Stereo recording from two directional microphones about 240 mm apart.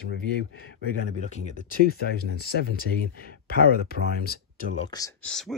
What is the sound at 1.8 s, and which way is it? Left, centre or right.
Speech, left.